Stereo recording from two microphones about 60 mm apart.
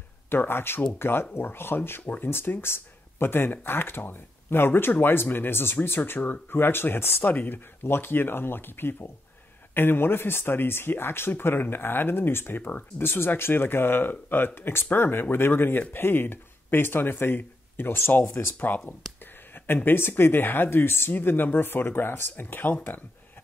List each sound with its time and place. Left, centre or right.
0.3 s speech: left